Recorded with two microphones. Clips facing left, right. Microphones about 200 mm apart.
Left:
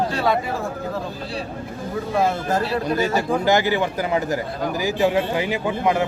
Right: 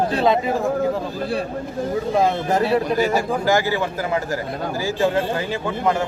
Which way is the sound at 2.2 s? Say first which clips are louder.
Right 1 dB; 20° right (ahead or behind).